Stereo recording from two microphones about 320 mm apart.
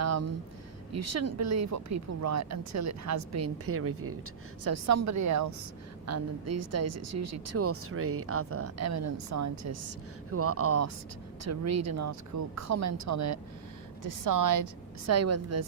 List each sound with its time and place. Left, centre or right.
0.0 s a sound: right
0.9 s speech: right
10.3 s speech: right
14.0 s speech: right